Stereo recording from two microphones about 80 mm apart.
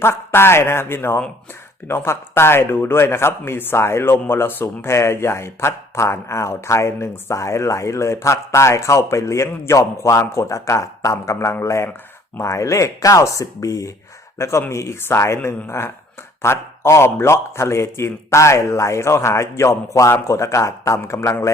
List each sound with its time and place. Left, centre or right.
0.0 s speech: left